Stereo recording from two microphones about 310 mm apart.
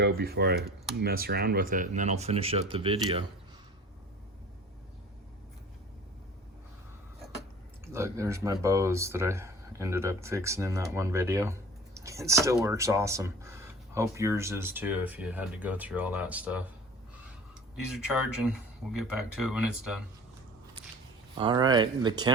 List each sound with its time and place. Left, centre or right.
0.0 s speech: right
7.9 s speech: centre
17.9 s speech: centre
21.3 s speech: centre